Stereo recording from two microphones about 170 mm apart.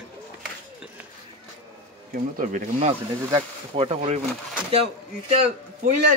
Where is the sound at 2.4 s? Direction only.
45° right (ahead or behind).